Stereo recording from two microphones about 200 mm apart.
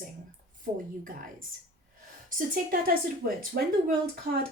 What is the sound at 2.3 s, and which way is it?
A woman's voice, 45° right (ahead or behind).